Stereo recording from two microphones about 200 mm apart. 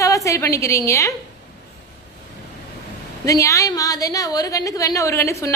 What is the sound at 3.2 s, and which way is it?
A woman's voice, 15° left (ahead or behind).